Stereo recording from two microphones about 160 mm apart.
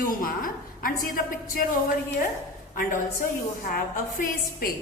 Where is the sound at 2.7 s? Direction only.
55° left (ahead or behind).